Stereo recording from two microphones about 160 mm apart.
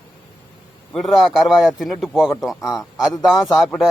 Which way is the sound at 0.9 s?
Centre (ahead or behind).